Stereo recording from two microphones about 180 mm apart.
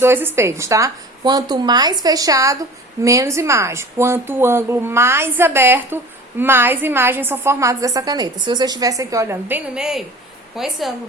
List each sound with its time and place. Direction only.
0.0 s a woman's voice: 10° right (ahead or behind)